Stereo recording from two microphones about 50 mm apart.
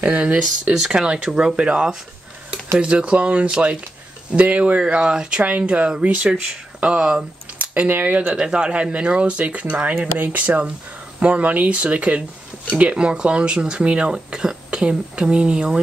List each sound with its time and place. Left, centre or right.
0.0 s speech: right
5.4 s speech: right
7.9 s speech: right
8.4 s speech: centre